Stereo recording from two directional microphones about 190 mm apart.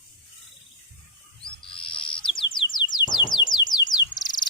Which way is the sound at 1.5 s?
25° left (ahead or behind).